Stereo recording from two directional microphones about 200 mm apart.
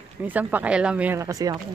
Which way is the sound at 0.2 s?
10° right (ahead or behind).